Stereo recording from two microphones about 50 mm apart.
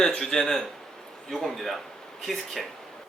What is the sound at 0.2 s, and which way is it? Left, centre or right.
Speech, centre.